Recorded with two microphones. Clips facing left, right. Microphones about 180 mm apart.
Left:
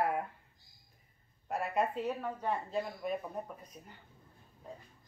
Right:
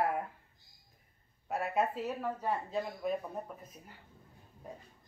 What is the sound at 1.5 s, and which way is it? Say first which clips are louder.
Speech: right 1 dB; centre (ahead or behind).